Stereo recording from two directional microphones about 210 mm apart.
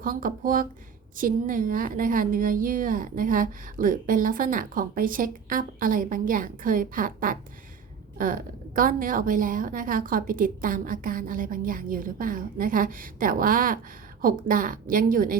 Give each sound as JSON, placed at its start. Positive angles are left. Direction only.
{"t": 0.0, "sound": "a woman's voice", "side_deg": -40}